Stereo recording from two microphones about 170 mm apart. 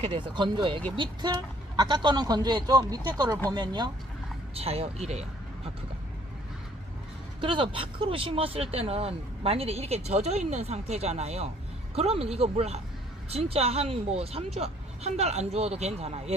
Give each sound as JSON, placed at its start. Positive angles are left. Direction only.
{"t": 0.0, "sound": "speech", "side_deg": -30}
{"t": 4.5, "sound": "speech", "side_deg": -35}
{"t": 7.4, "sound": "speech", "side_deg": -30}